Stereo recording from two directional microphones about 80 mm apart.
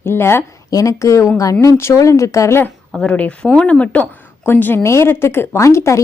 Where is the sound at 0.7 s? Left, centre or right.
Left.